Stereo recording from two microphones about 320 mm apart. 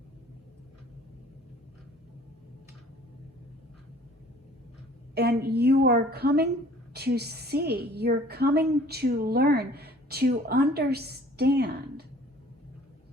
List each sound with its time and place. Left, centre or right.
5.1 s a woman's voice: right